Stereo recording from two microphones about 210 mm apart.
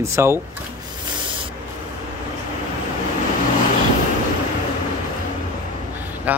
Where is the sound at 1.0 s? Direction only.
20° right (ahead or behind).